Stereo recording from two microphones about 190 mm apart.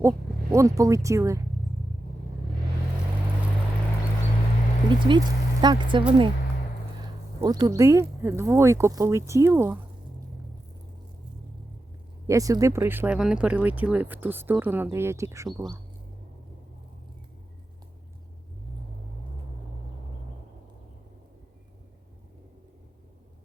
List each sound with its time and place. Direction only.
0.0 s speech: 15° right (ahead or behind)
4.9 s speech: 25° right (ahead or behind)
12.3 s speech: 15° right (ahead or behind)